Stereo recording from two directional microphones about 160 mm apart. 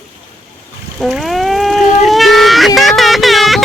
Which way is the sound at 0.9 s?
Centre (ahead or behind).